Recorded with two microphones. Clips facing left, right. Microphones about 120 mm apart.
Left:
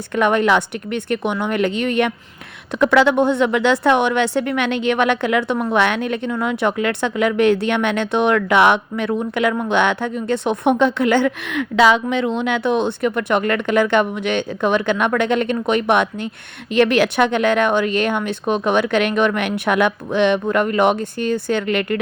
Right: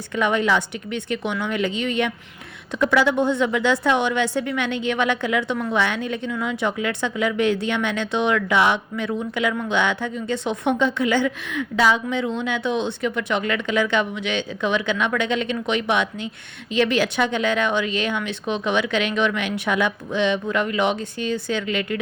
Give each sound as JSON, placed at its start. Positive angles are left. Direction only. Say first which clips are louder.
{"t": 0.2, "sound": "a woman's voice", "louder": "left 5 dB", "side_deg": 55}